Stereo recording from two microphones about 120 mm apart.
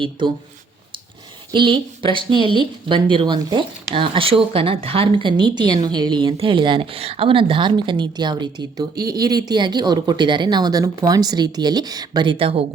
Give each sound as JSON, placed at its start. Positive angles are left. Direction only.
{"t": 0.2, "sound": "a woman's voice", "side_deg": -40}
{"t": 1.5, "sound": "a woman's voice", "side_deg": -40}